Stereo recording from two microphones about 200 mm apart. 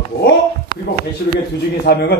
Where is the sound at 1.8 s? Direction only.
55° left (ahead or behind).